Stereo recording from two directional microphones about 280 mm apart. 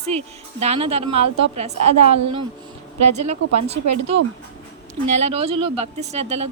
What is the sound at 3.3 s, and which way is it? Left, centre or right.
Speech, right.